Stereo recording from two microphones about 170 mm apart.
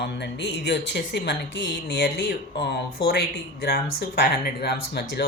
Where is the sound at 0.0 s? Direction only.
85° left.